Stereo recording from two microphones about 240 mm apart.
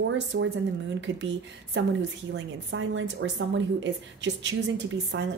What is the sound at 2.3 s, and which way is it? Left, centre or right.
A woman's voice, right.